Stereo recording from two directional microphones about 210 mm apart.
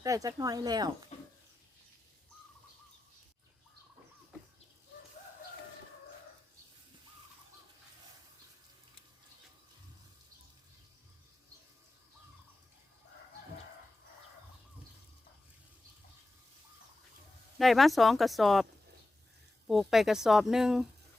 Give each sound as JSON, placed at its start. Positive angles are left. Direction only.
{"t": 0.0, "sound": "speech", "side_deg": -15}
{"t": 17.6, "sound": "speech", "side_deg": 0}